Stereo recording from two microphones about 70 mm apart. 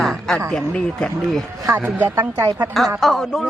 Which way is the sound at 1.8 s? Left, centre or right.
Right.